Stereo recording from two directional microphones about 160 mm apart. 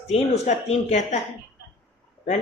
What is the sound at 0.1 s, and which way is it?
A woman's voice, 45° left (ahead or behind).